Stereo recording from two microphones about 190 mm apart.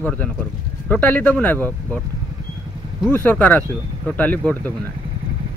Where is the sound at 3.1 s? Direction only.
10° left (ahead or behind).